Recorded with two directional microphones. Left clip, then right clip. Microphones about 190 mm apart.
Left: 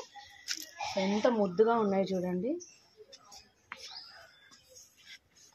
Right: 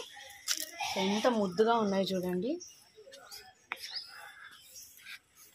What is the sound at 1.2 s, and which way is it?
Speech, 40° left (ahead or behind).